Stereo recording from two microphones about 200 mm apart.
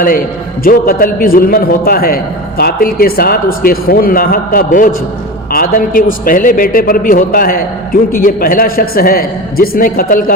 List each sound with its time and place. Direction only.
0.6 s a man's voice: 45° left (ahead or behind)